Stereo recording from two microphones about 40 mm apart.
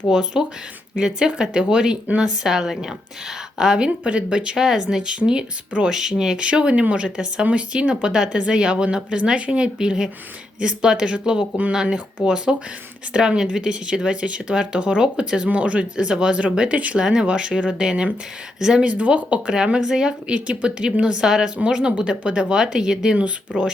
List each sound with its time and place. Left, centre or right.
0.1 s speech: centre
2.4 s speech: centre
4.0 s speech: right
4.5 s speech: centre
6.4 s speech: right
17.0 s speech: centre
18.8 s speech: right
19.5 s speech: right
20.1 s speech: right
21.2 s speech: centre